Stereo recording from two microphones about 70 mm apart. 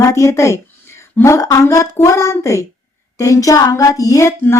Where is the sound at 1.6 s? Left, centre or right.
Left.